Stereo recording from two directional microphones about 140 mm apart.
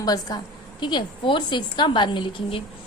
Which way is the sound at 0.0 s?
25° left (ahead or behind).